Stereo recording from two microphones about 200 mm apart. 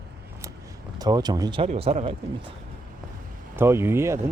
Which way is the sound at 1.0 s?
20° right (ahead or behind).